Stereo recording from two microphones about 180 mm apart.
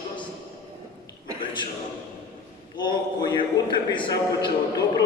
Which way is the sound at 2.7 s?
25° left (ahead or behind).